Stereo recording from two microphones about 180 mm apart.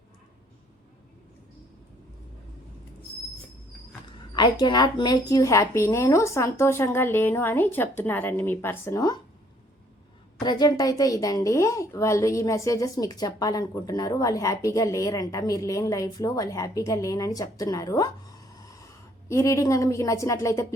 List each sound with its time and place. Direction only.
4.4 s a woman's voice: 25° left (ahead or behind)
10.4 s a woman's voice: 25° left (ahead or behind)
19.3 s a woman's voice: 15° left (ahead or behind)